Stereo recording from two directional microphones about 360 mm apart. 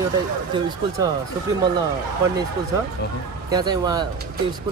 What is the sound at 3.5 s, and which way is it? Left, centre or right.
Speech, centre.